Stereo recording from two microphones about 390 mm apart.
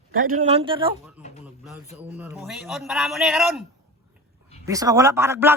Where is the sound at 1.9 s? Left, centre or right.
Centre.